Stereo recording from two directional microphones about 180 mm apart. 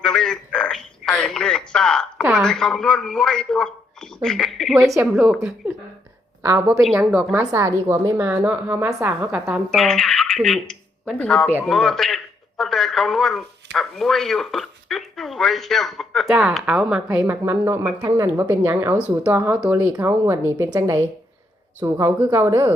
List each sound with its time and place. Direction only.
0.0 s a sound: 5° left (ahead or behind)
2.3 s speech: centre (ahead or behind)
4.8 s speech: 10° right (ahead or behind)
6.8 s a man's voice: 5° right (ahead or behind)